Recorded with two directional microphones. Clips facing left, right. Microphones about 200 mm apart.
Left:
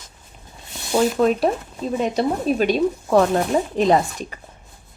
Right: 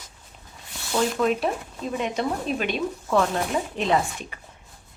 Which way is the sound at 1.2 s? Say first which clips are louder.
Left 5 dB; 40° left (ahead or behind).